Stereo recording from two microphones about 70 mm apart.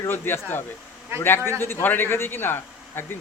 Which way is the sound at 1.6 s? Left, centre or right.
Left.